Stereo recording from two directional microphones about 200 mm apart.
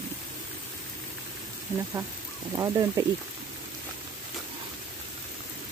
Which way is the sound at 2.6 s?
15° right (ahead or behind).